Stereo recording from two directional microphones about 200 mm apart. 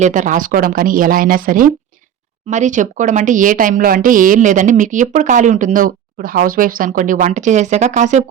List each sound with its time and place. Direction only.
0.0 s a woman's voice: 40° right (ahead or behind)